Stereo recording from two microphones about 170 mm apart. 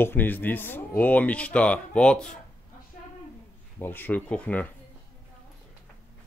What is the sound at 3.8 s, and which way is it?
Speech, 10° left (ahead or behind).